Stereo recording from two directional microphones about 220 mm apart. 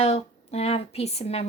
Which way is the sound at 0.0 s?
30° left (ahead or behind).